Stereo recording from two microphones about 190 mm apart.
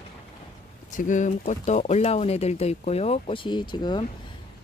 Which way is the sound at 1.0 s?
45° left (ahead or behind).